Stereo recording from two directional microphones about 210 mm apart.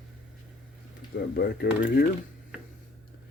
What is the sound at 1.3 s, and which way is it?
Speech, 50° left (ahead or behind).